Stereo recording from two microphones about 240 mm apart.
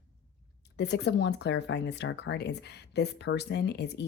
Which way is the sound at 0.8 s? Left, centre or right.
Left.